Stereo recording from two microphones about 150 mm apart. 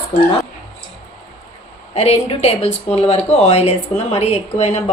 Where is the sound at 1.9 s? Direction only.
45° left (ahead or behind).